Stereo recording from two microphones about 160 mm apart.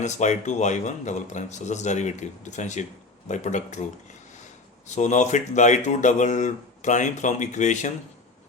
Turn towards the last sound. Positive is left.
turn(degrees=50)  # may be behind; listen again after turning